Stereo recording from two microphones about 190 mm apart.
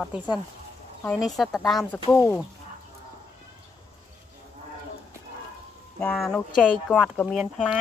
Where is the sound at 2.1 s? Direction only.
15° left (ahead or behind).